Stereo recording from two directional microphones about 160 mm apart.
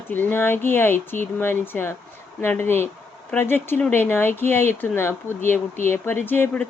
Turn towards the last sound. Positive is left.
turn(degrees=10)  # may be behind; listen again after turning